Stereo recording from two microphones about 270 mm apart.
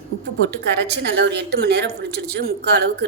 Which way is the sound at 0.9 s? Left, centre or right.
Right.